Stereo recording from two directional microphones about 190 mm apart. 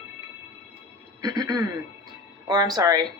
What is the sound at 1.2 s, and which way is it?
Speech, 20° right (ahead or behind).